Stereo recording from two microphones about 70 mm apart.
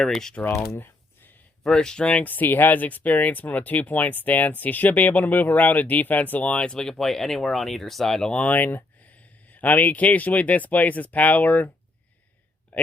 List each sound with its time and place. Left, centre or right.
0.0 s speech: centre
1.6 s speech: centre
12.7 s a sound: left